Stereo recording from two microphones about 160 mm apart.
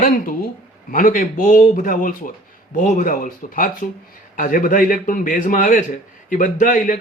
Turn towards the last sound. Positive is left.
turn(degrees=55)  # may be behind; listen again after turning